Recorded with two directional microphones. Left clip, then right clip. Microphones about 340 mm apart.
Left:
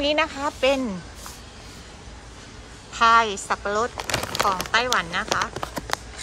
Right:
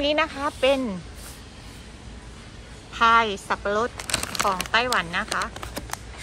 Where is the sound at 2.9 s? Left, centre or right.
Centre.